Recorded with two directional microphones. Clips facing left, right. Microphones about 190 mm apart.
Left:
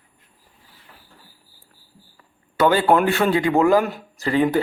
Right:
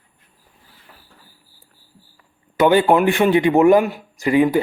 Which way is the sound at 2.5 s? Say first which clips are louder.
Right 3 dB; 20° right (ahead or behind).